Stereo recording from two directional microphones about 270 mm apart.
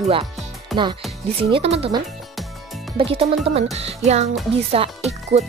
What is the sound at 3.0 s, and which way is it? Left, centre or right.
Speech, right.